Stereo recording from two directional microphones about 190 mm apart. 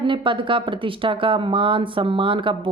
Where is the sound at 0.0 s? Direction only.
25° right (ahead or behind).